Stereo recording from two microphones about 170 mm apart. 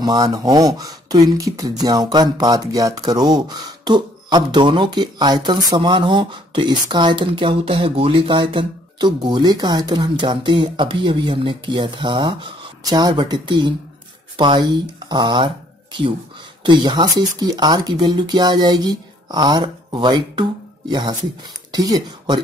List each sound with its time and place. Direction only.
0.0 s speech: 25° right (ahead or behind)